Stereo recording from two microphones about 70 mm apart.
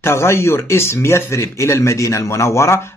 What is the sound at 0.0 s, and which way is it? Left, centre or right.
Speech, left.